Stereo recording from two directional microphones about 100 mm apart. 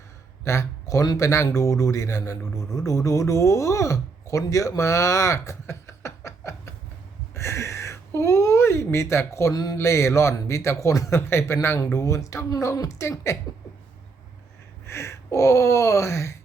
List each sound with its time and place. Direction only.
0.4 s speech: 30° left (ahead or behind)
7.3 s a sound: 30° left (ahead or behind)
9.7 s speech: 30° left (ahead or behind)
14.8 s gasp: 25° left (ahead or behind)